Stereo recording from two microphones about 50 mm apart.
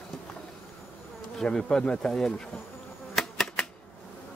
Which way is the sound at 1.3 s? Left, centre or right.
Centre.